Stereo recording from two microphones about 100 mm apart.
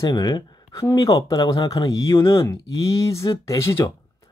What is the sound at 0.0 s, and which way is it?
Speech, 40° left (ahead or behind).